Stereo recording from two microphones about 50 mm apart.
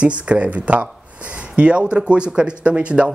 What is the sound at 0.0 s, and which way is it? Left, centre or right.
Speech, right.